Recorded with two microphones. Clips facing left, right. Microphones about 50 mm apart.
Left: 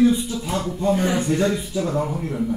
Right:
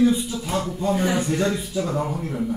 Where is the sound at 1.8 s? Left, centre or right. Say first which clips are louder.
Left 3 dB; centre.